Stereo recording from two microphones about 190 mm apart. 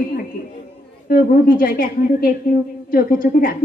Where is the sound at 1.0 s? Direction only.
50° left (ahead or behind).